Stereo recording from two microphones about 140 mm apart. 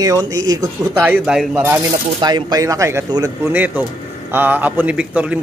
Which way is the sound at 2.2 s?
30° right (ahead or behind).